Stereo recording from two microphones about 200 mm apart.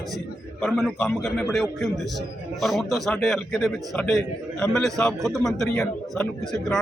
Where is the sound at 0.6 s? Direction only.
Centre (ahead or behind).